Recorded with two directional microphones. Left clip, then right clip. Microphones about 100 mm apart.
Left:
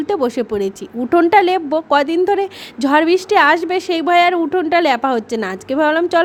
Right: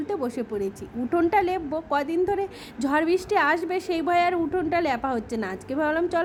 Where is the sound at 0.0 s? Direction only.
50° left (ahead or behind).